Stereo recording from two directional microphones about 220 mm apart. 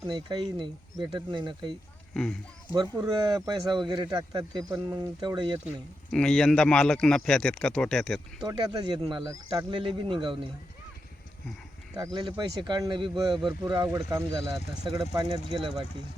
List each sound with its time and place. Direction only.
0.1 s speech: 20° right (ahead or behind)
2.1 s a man's voice: 5° left (ahead or behind)
2.7 s speech: 15° right (ahead or behind)
6.1 s a man's voice: 5° left (ahead or behind)
8.4 s speech: 20° right (ahead or behind)
11.9 s speech: 20° right (ahead or behind)